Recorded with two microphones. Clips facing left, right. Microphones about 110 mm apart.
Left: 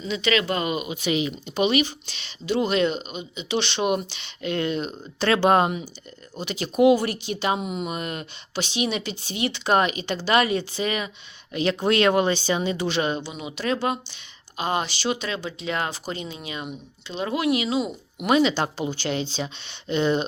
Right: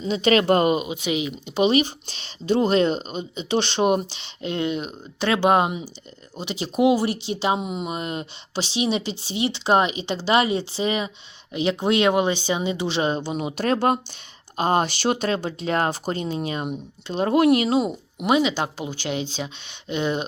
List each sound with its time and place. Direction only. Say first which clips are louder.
0.0 s speech: right 5 dB; 40° right (ahead or behind)
0.8 s speech: even; 20° right (ahead or behind)
1.5 s speech: right 3 dB; 35° right (ahead or behind); by 5.8 s 15° right (ahead or behind)
6.3 s speech: even; 25° right (ahead or behind); by 17.9 s 50° right (ahead or behind)
18.3 s speech: left 1 dB; 10° right (ahead or behind)